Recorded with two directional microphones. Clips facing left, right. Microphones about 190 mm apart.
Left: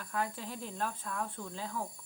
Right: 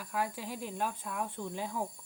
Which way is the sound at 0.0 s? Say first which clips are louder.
Right 1 dB; 10° right (ahead or behind).